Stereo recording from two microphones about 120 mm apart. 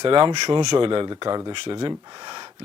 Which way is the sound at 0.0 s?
40° right (ahead or behind).